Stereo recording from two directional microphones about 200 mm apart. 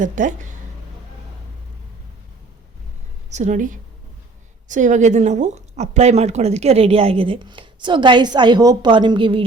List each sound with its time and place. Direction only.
0.0 s a woman's voice: 40° right (ahead or behind)
3.2 s a woman's voice: 35° right (ahead or behind)